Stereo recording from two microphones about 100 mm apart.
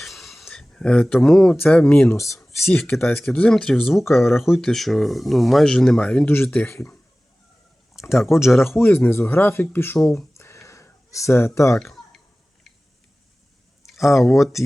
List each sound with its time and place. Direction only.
0.0 s a sound: centre (ahead or behind)
1.5 s speech: 15° left (ahead or behind)
3.2 s speech: 10° left (ahead or behind)
6.2 s speech: 20° left (ahead or behind)
8.1 s speech: 5° right (ahead or behind)
8.6 s speech: 25° left (ahead or behind)
10.3 s a sound: 30° left (ahead or behind)
13.8 s speech: centre (ahead or behind)